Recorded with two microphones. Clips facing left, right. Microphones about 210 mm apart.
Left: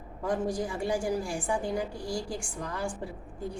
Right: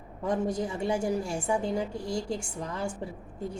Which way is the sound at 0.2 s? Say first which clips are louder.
Right 1 dB; 25° right (ahead or behind).